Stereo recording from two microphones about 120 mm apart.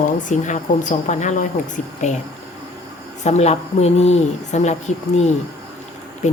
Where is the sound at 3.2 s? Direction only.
70° left (ahead or behind).